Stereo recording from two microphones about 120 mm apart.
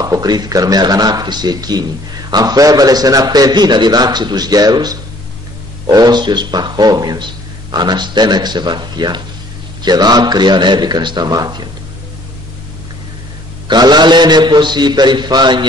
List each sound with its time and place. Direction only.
0.0 s a man's voice: 30° right (ahead or behind)
13.7 s a man's voice: 35° right (ahead or behind)